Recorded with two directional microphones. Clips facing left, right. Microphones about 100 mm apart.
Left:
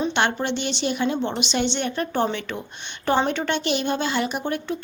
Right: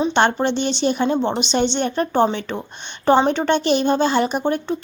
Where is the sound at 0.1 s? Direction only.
35° right (ahead or behind).